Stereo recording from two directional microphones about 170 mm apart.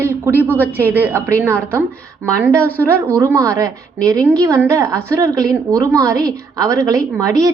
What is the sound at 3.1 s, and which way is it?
A woman's voice, 20° right (ahead or behind).